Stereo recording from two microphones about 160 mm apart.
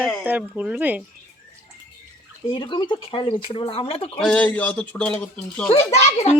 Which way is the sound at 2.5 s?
30° left (ahead or behind).